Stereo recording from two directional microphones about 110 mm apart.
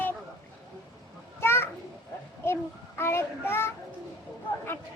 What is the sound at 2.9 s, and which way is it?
Speech, 20° left (ahead or behind).